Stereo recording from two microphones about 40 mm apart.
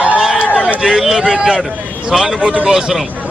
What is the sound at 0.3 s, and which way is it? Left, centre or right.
Run, right.